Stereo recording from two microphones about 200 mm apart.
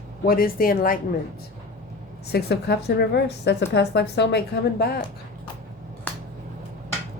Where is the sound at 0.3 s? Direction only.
45° left (ahead or behind).